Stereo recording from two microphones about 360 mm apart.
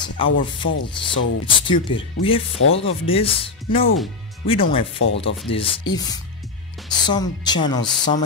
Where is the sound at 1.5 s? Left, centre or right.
Centre.